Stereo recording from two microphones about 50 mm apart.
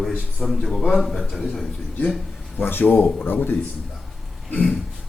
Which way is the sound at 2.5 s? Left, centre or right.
Left.